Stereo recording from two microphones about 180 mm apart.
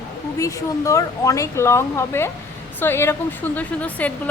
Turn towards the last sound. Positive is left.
turn(degrees=10)  # may be behind; listen again after turning